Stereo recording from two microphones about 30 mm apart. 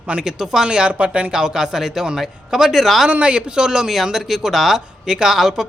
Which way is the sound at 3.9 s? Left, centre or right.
Centre.